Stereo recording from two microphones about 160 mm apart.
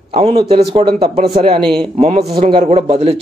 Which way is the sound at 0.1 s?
35° right (ahead or behind).